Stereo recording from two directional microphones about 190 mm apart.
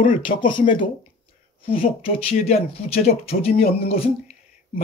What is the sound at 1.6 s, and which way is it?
Speech, 30° left (ahead or behind).